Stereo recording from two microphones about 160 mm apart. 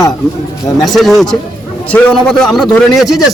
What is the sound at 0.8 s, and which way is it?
A man's voice, centre (ahead or behind).